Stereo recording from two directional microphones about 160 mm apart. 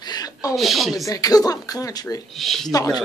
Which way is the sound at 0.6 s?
Centre (ahead or behind).